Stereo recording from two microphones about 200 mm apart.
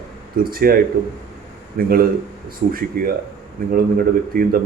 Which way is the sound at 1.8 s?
50° right (ahead or behind).